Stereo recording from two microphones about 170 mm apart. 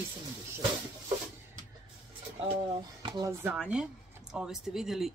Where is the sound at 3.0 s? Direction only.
25° right (ahead or behind).